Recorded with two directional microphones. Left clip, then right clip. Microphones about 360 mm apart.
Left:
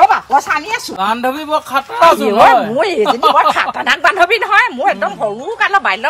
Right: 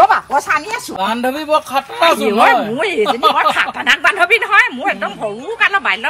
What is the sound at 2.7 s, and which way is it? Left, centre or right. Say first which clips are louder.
A woman's voice: left 3 dB; left.